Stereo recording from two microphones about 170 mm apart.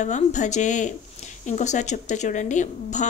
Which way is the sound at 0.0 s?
45° left (ahead or behind).